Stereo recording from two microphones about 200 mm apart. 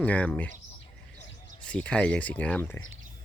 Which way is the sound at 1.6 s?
5° left (ahead or behind).